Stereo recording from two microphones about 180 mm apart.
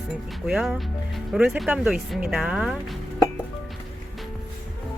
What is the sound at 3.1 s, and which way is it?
Music, 15° left (ahead or behind).